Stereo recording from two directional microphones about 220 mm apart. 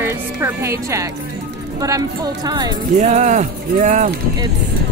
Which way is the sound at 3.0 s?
35° right (ahead or behind).